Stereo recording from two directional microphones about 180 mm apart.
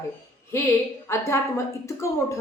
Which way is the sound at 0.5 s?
15° left (ahead or behind).